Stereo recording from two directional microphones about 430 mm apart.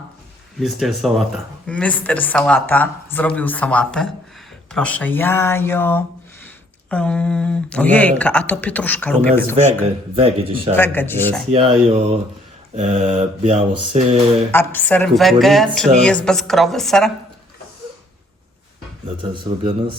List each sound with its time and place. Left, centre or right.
0.6 s speech: centre
10.2 s speech: centre
10.8 s speech: centre
11.5 s speech: centre
14.5 s speech: centre
19.0 s speech: centre